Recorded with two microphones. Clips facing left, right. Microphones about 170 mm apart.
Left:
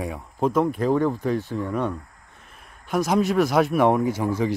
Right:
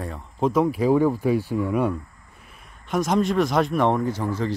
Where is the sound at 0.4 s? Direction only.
5° right (ahead or behind).